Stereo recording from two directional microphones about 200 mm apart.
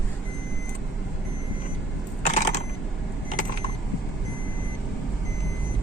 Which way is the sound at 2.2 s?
35° left (ahead or behind).